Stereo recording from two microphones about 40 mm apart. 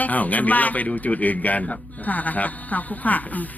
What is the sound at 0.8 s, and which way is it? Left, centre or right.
Speech, left.